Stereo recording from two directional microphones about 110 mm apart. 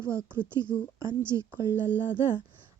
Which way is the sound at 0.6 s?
30° right (ahead or behind).